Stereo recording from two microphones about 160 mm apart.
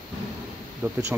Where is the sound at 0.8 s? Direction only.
15° right (ahead or behind).